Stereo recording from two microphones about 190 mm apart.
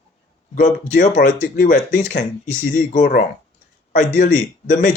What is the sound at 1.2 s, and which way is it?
Speech, 55° left (ahead or behind).